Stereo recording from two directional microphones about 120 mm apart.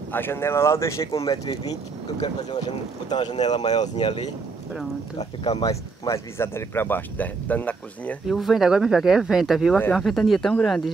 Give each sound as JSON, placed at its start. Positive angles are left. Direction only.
{"t": 0.1, "sound": "speech", "side_deg": 20}
{"t": 3.6, "sound": "speech", "side_deg": 70}
{"t": 5.1, "sound": "speech", "side_deg": 60}
{"t": 5.6, "sound": "speech", "side_deg": 25}
{"t": 8.3, "sound": "speech", "side_deg": 0}